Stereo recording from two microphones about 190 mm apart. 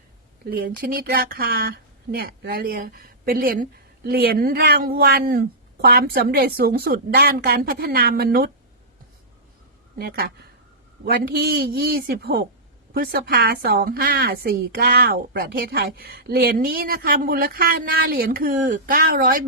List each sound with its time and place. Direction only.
0.5 s speech: 55° right (ahead or behind)
10.0 s a man's voice: 55° right (ahead or behind)